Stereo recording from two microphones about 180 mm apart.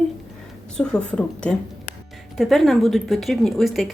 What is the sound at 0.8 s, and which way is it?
A woman's voice, 5° left (ahead or behind).